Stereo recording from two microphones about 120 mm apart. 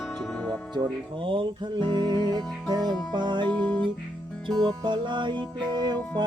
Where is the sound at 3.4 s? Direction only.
15° left (ahead or behind).